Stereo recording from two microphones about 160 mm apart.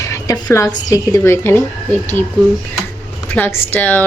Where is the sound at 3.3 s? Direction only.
10° left (ahead or behind).